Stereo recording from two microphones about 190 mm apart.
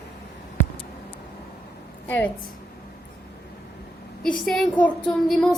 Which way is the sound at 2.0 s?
10° left (ahead or behind).